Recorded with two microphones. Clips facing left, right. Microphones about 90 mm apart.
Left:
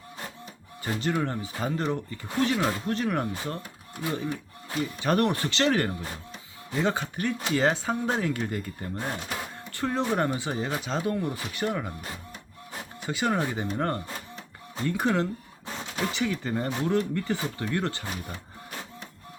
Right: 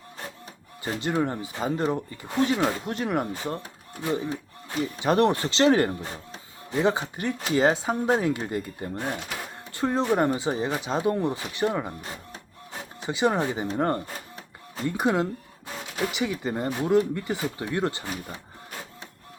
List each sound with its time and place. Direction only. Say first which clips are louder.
0.9 s speech: right 2 dB; 20° right (ahead or behind)
13.0 s speech: right 3 dB; 20° right (ahead or behind)